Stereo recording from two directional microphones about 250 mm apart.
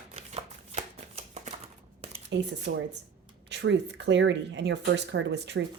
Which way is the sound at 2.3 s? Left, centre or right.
Right.